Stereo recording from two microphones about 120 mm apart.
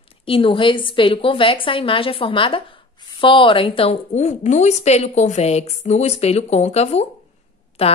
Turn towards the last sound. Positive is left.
turn(degrees=55)  # may be behind; listen again after turning